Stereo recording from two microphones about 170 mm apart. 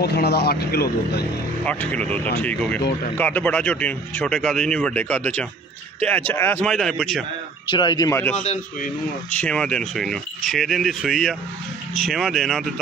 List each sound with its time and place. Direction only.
0.0 s speech: 70° left (ahead or behind)
1.6 s speech: 10° left (ahead or behind)
7.7 s speech: 25° left (ahead or behind)
8.4 s a man's voice: 40° left (ahead or behind)
9.3 s speech: 5° left (ahead or behind)